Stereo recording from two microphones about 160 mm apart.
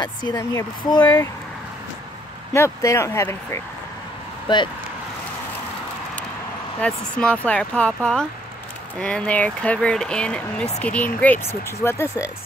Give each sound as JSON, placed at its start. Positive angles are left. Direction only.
{"t": 0.0, "sound": "speech", "side_deg": 25}
{"t": 2.5, "sound": "speech", "side_deg": 15}
{"t": 6.8, "sound": "speech", "side_deg": 5}